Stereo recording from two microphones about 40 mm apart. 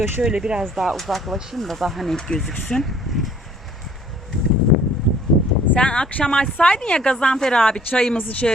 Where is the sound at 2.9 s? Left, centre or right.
Centre.